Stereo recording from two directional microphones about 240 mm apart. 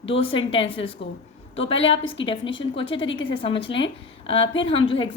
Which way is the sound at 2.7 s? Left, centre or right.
Left.